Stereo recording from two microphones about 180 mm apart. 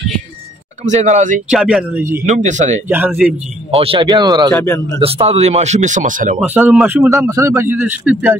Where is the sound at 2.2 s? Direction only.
40° right (ahead or behind).